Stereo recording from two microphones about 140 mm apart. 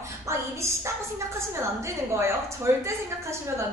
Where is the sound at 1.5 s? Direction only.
20° right (ahead or behind).